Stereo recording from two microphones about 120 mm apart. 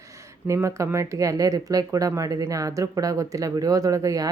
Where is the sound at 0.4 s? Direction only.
25° right (ahead or behind).